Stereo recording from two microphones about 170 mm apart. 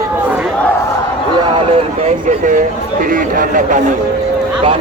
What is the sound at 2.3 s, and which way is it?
Speech, 50° right (ahead or behind).